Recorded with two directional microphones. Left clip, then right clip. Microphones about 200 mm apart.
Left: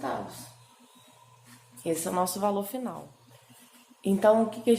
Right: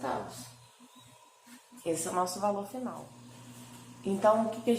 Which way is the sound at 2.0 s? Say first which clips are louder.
Left 3 dB; 55° left (ahead or behind).